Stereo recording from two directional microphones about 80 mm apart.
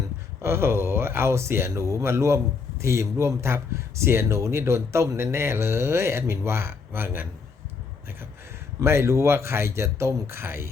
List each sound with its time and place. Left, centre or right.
0.4 s speech: right
8.8 s speech: right